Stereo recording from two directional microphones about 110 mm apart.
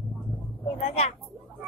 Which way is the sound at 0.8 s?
70° left (ahead or behind).